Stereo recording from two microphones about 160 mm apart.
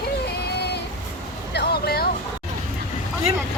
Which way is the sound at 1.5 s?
90° left.